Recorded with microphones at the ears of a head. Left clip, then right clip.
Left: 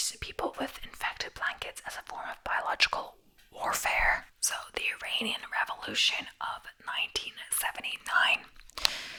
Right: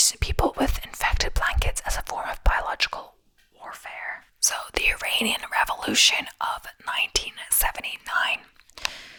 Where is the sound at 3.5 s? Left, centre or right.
Left.